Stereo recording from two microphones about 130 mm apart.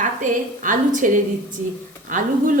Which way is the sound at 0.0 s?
85° right.